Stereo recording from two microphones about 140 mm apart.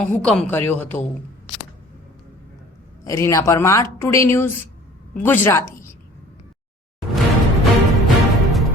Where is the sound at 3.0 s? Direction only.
20° left (ahead or behind).